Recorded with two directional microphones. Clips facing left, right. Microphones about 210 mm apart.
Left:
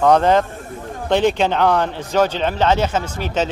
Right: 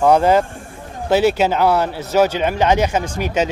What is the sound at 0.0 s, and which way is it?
Speech, 10° right (ahead or behind).